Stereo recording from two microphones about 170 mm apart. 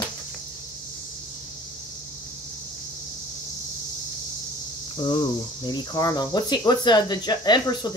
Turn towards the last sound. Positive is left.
turn(degrees=25)  # may be behind; listen again after turning